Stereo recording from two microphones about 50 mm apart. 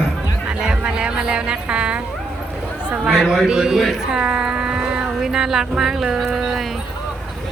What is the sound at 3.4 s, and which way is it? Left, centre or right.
Speech, centre.